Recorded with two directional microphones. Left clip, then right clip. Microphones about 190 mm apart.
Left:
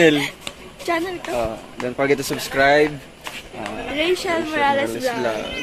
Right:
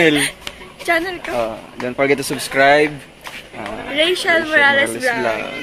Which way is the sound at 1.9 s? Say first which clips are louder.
Right 3 dB; 30° right (ahead or behind).